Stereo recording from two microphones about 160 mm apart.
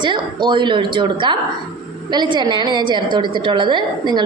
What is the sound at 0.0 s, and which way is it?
A woman's voice, 30° right (ahead or behind).